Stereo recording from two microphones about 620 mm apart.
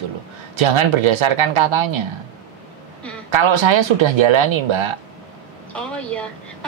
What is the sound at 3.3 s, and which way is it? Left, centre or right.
Speech, right.